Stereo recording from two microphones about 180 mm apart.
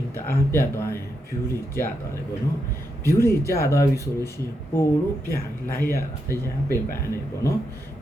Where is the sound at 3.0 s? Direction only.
15° left (ahead or behind).